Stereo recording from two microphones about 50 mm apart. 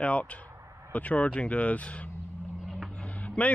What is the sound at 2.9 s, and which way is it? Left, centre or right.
Vehicle, left.